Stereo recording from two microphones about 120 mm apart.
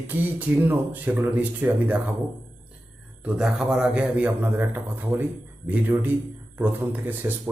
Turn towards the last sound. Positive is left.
turn(degrees=-15)  # may be behind; listen again after turning